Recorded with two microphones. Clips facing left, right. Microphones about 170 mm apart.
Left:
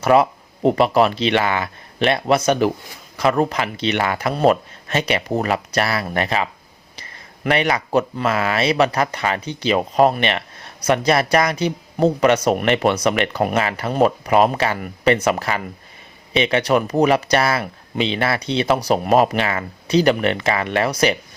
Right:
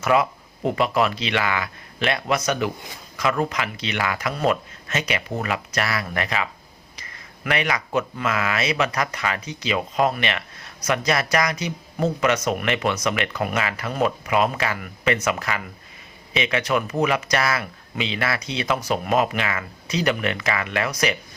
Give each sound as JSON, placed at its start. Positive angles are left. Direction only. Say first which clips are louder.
{"t": 0.0, "sound": "speech", "louder": "left 5 dB", "side_deg": 35}